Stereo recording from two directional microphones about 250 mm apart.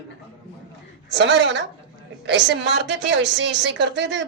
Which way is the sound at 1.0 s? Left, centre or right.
Right.